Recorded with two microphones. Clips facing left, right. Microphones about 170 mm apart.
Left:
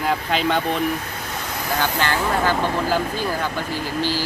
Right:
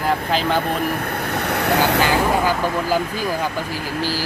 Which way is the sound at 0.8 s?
60° right (ahead or behind).